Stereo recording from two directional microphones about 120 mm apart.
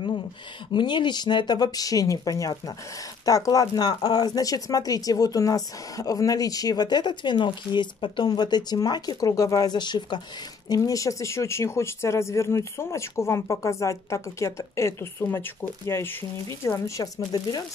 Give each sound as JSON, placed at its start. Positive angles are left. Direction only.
{"t": 0.7, "sound": "speech", "side_deg": 40}
{"t": 10.7, "sound": "speech", "side_deg": 30}